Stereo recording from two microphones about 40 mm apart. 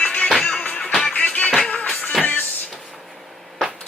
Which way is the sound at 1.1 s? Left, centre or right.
Left.